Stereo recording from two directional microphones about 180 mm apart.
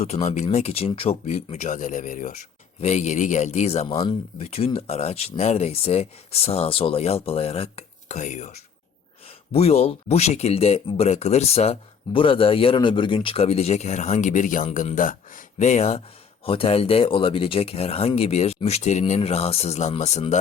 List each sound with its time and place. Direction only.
0.0 s speech: 40° left (ahead or behind)